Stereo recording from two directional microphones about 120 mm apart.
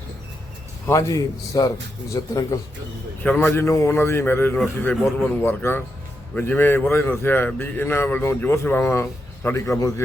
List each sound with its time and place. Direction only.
0.9 s a man's voice: 25° left (ahead or behind)
3.2 s a man's voice: 15° left (ahead or behind)
5.0 s a man's voice: 5° left (ahead or behind)
5.4 s a man's voice: 20° left (ahead or behind)